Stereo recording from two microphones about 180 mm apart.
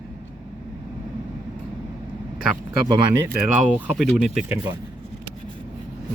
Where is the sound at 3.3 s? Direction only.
45° right (ahead or behind).